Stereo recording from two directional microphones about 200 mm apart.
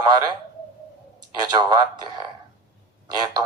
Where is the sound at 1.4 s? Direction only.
20° right (ahead or behind).